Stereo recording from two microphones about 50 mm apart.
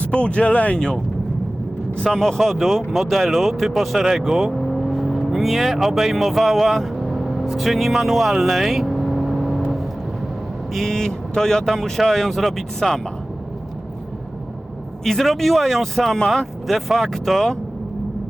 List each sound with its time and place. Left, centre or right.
0.0 s speech: left
2.0 s speech: centre
4.7 s vehicle: centre
10.8 s speech: centre
15.0 s speech: centre